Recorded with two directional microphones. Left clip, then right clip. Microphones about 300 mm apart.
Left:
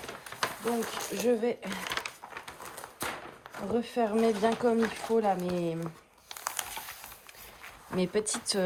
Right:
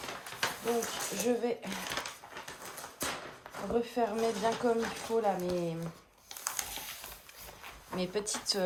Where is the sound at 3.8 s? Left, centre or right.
Left.